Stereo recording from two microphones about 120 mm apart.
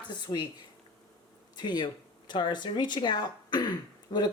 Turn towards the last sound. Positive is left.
turn(degrees=35)  # may be behind; listen again after turning